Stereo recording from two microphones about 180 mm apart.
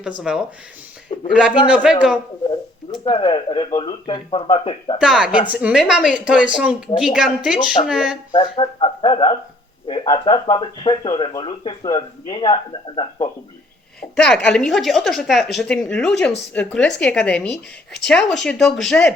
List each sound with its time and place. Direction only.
0.2 s a woman's voice: 5° right (ahead or behind)
2.9 s speech: 25° left (ahead or behind)
4.9 s a woman's voice: 5° right (ahead or behind)
8.3 s speech: 25° left (ahead or behind)
14.0 s a woman's voice: 5° left (ahead or behind)